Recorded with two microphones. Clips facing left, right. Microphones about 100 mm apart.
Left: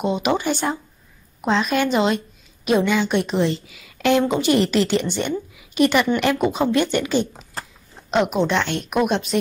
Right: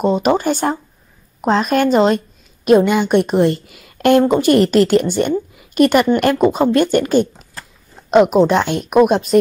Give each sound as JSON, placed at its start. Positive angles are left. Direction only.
{"t": 0.0, "sound": "a woman's voice", "side_deg": -40}
{"t": 8.3, "sound": "a woman's voice", "side_deg": -45}